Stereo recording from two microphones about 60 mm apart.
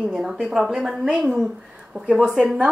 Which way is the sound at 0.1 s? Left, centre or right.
Centre.